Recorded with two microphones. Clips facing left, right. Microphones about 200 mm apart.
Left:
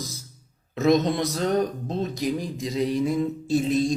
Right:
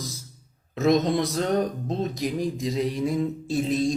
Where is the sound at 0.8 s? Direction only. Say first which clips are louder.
Even; centre (ahead or behind).